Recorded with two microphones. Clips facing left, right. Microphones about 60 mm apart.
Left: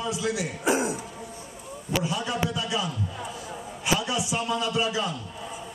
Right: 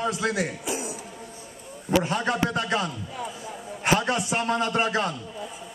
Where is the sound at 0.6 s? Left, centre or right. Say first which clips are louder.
Left 7 dB; left.